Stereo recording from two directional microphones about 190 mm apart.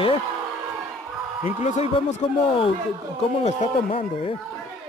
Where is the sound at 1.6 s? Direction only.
35° left (ahead or behind).